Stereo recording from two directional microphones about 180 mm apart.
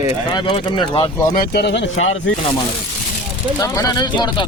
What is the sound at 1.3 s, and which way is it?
Speech, 60° left (ahead or behind).